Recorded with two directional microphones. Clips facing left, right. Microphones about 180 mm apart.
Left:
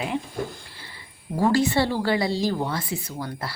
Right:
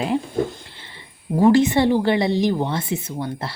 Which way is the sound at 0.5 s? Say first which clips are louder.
Right 2 dB; 25° right (ahead or behind).